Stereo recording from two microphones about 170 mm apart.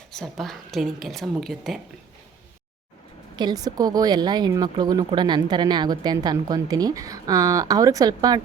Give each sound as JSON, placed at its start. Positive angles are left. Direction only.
{"t": 0.1, "sound": "a woman's voice", "side_deg": 5}
{"t": 3.3, "sound": "a woman's voice", "side_deg": -25}